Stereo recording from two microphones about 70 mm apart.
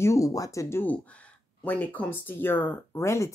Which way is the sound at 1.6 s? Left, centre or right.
Left.